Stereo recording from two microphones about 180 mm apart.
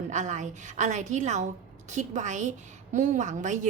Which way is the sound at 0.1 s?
40° right (ahead or behind).